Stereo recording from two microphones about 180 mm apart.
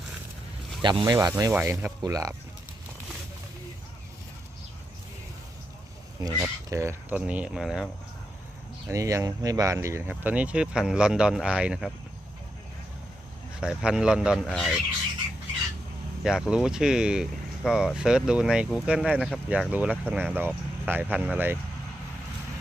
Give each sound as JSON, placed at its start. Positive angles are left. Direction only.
{"t": 0.8, "sound": "speech", "side_deg": -25}
{"t": 6.2, "sound": "speech", "side_deg": -15}
{"t": 8.9, "sound": "speech", "side_deg": -15}
{"t": 13.6, "sound": "speech", "side_deg": -5}
{"t": 16.2, "sound": "speech", "side_deg": -5}